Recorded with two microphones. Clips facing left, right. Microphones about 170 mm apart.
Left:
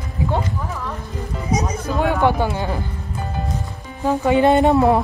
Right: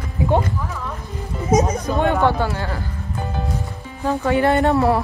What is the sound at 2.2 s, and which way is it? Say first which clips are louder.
Speech: left 1 dB; 15° left (ahead or behind).